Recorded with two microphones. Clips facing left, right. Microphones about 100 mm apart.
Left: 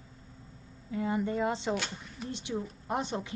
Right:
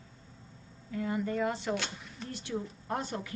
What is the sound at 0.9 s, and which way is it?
A woman's voice, 25° left (ahead or behind).